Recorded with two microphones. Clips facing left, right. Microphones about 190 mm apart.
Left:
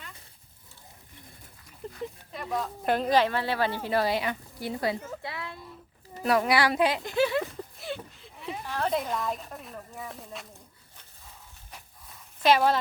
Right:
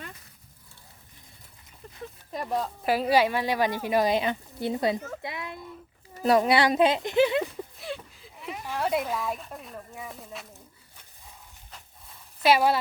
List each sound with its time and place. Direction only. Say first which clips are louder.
1.8 s a sound: left 8 dB; 30° left (ahead or behind)
2.8 s speech: right 1 dB; 5° right (ahead or behind)
7.8 s speech: even; centre (ahead or behind)
12.4 s speech: right 1 dB; 10° right (ahead or behind)